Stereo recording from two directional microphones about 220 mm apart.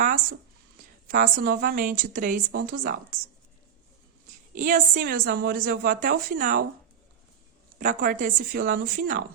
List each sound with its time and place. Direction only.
1.0 s a woman's voice: 40° right (ahead or behind)
4.5 s a woman's voice: 40° right (ahead or behind)
7.8 s a woman's voice: 35° right (ahead or behind)